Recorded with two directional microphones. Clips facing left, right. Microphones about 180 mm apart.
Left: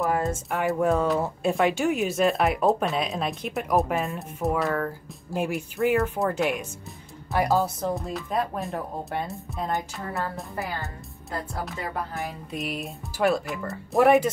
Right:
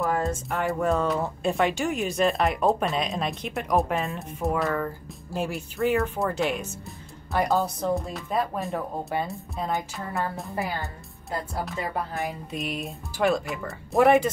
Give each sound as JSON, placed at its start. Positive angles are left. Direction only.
{"t": 0.0, "sound": "speech", "side_deg": 5}
{"t": 5.3, "sound": "speech", "side_deg": 15}
{"t": 10.5, "sound": "a woman's voice", "side_deg": -15}
{"t": 12.4, "sound": "speech", "side_deg": 0}